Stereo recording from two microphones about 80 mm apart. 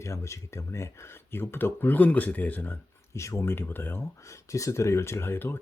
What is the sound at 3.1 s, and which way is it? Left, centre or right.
Speech, left.